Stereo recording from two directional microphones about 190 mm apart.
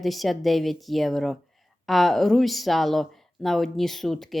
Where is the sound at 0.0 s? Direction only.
Centre (ahead or behind).